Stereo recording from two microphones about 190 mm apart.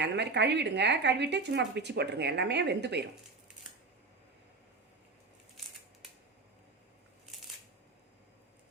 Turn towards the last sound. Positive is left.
turn(degrees=0)  # may be behind; listen again after turning